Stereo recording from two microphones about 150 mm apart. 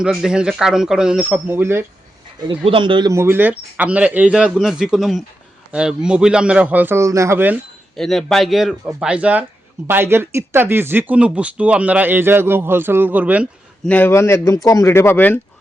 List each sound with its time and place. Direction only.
0.0 s speech: 5° right (ahead or behind)
2.5 s speech: 35° right (ahead or behind)
3.1 s speech: 15° right (ahead or behind)
7.9 s speech: centre (ahead or behind)
13.8 s speech: 10° left (ahead or behind)